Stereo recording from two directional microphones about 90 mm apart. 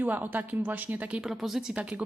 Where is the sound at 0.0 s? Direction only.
20° right (ahead or behind).